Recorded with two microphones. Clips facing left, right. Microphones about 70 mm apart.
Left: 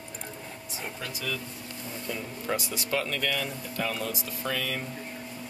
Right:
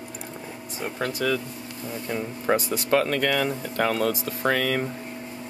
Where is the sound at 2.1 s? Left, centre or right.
Right.